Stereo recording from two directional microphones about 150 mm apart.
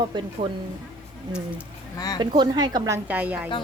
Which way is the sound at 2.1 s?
30° right (ahead or behind).